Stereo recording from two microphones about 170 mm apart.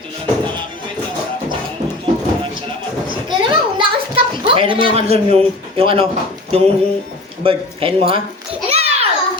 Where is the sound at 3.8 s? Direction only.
30° right (ahead or behind).